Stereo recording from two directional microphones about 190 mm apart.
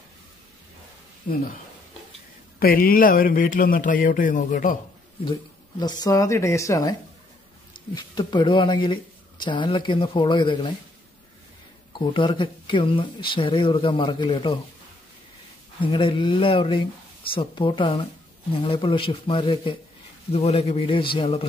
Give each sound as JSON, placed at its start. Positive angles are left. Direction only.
{"t": 2.6, "sound": "a man's voice", "side_deg": 50}
{"t": 5.8, "sound": "speech", "side_deg": 20}
{"t": 11.9, "sound": "speech", "side_deg": 25}
{"t": 15.8, "sound": "a man's voice", "side_deg": 25}